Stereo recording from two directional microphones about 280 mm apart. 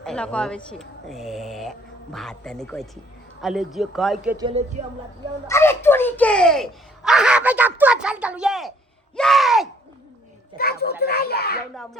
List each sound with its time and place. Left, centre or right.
0.0 s speech: centre
4.4 s speech: centre
5.5 s a child's voice: centre
9.1 s a sound: centre
10.6 s speech: left
11.0 s a sound: left